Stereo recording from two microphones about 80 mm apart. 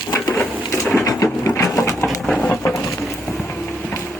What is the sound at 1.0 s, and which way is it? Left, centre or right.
Sewing machine, left.